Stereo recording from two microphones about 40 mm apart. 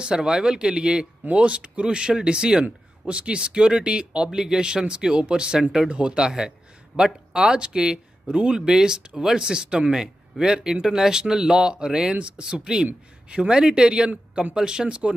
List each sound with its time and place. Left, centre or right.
0.0 s speech: right
4.3 s speech: centre